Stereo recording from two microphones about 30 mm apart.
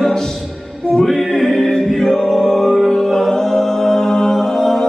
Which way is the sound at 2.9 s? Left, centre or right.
Centre.